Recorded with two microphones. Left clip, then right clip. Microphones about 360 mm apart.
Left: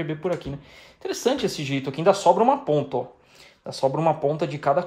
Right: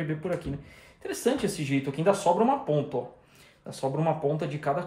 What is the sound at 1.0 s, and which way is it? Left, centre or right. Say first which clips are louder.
Speech: left 4 dB; centre.